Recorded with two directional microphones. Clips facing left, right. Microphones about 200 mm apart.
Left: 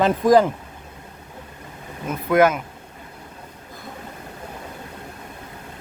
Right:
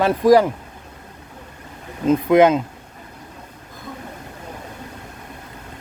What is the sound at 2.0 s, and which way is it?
Speech, 20° right (ahead or behind).